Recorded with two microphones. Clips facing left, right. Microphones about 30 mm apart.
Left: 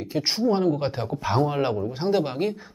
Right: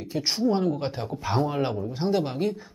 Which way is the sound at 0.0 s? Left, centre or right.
Centre.